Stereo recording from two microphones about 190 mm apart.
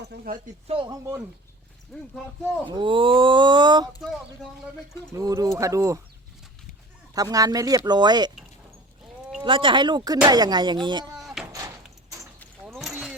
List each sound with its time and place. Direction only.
0.1 s speech: 60° right (ahead or behind)
0.7 s speech: 25° right (ahead or behind)
1.9 s speech: 5° left (ahead or behind)
2.6 s speech: 25° right (ahead or behind)
5.1 s speech: 20° right (ahead or behind)
7.1 s speech: 20° right (ahead or behind)
9.4 s speech: 25° right (ahead or behind)
11.2 s door: centre (ahead or behind)
12.6 s keys jangling: 5° right (ahead or behind)